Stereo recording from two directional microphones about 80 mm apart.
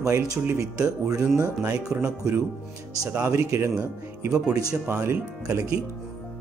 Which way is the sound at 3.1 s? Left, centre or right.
Right.